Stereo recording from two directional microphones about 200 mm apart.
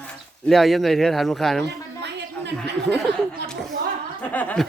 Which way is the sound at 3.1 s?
55° right (ahead or behind).